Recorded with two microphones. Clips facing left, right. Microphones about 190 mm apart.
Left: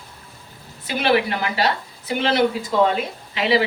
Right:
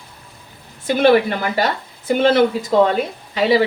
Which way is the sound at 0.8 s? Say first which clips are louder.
Right 6 dB; 45° right (ahead or behind).